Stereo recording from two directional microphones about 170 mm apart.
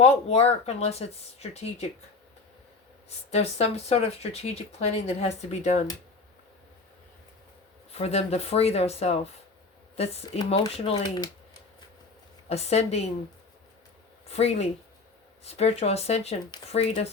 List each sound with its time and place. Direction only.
0.0 s speech: 35° left (ahead or behind)
3.3 s speech: 40° left (ahead or behind)
7.9 s speech: 40° left (ahead or behind)
12.5 s speech: 40° left (ahead or behind)
14.3 s speech: 40° left (ahead or behind)